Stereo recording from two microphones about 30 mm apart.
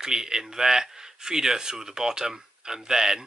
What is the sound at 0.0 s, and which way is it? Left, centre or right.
Speech, centre.